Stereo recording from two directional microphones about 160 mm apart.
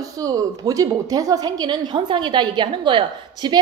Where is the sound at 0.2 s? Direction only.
20° right (ahead or behind).